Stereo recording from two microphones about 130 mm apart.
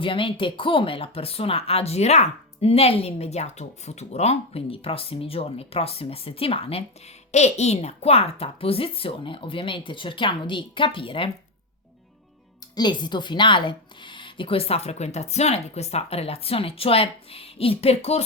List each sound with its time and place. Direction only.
0.0 s speech: 40° left (ahead or behind)
7.3 s speech: 60° left (ahead or behind); by 11.3 s 40° left (ahead or behind)
12.7 s speech: 35° left (ahead or behind); by 18.2 s 50° left (ahead or behind)